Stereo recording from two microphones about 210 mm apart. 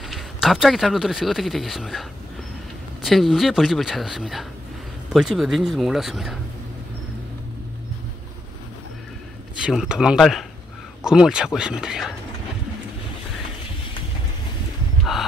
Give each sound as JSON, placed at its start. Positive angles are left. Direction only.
{"t": 0.1, "sound": "speech", "side_deg": 0}
{"t": 9.6, "sound": "speech", "side_deg": -5}
{"t": 15.1, "sound": "gasp", "side_deg": 0}